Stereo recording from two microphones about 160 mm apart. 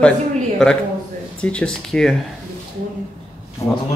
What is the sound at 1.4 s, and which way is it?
Speech, 5° left (ahead or behind).